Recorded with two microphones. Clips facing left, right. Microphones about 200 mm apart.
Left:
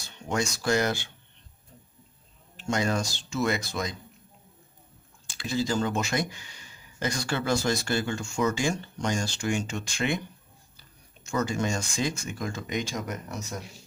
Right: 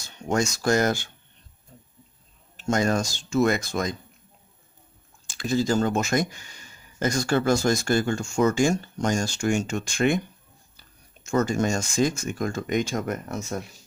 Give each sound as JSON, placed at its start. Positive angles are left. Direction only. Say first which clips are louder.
{"t": 0.3, "sound": "speech", "louder": "right 4 dB", "side_deg": -45}
{"t": 2.6, "sound": "speech", "louder": "right 4 dB", "side_deg": -45}
{"t": 5.3, "sound": "speech", "louder": "right 5 dB", "side_deg": -45}
{"t": 11.2, "sound": "speech", "louder": "right 5 dB", "side_deg": -45}